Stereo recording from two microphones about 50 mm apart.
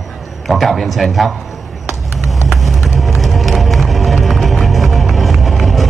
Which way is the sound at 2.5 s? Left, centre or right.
Centre.